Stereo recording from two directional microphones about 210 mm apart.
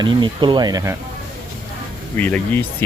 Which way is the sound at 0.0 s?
20° right (ahead or behind).